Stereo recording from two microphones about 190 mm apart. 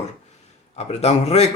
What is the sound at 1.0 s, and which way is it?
Speech, 35° left (ahead or behind).